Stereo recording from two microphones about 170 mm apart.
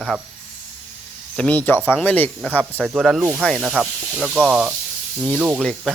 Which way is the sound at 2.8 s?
Centre (ahead or behind).